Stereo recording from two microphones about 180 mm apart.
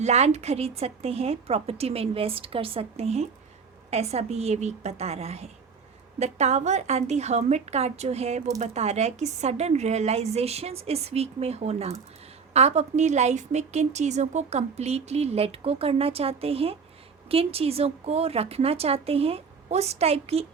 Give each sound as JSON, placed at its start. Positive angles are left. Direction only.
{"t": 0.0, "sound": "a woman's voice", "side_deg": -35}